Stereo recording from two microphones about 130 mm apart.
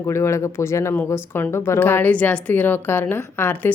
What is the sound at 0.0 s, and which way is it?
A woman's voice, 20° left (ahead or behind).